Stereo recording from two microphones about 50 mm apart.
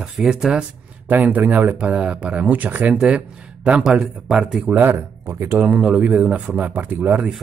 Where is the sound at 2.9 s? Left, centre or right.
Centre.